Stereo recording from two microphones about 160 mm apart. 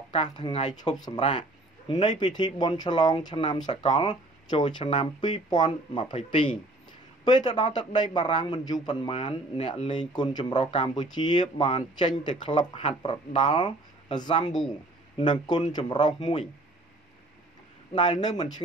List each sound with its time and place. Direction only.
0.1 s speech: 30° left (ahead or behind)
18.0 s speech: 25° left (ahead or behind)